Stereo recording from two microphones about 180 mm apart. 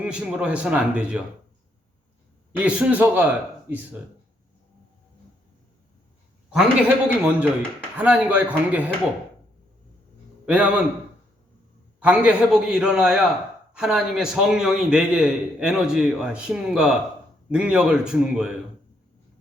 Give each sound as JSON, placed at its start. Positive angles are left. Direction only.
{"t": 0.0, "sound": "a man's voice", "side_deg": -5}
{"t": 2.6, "sound": "a man's voice", "side_deg": -10}
{"t": 6.5, "sound": "a man's voice", "side_deg": -5}
{"t": 10.4, "sound": "a man's voice", "side_deg": -5}
{"t": 11.9, "sound": "a man's voice", "side_deg": -5}